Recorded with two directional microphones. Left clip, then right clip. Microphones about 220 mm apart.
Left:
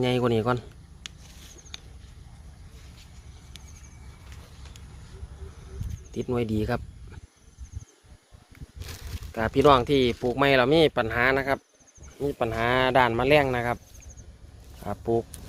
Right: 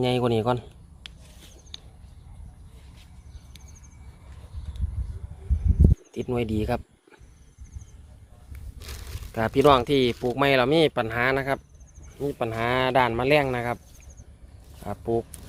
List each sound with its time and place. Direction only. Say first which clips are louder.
0.0 s speech: right 1 dB; 5° right (ahead or behind)
6.1 s speech: left 4 dB; 5° right (ahead or behind)
8.8 s a sound: even; 25° right (ahead or behind)
9.4 s speech: right 1 dB; 15° right (ahead or behind)
14.8 s speech: left 1 dB; centre (ahead or behind)